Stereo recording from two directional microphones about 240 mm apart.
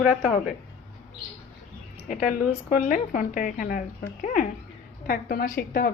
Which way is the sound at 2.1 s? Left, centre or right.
Left.